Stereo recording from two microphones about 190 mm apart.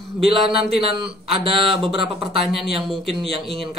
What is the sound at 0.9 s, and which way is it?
Speech, 25° right (ahead or behind).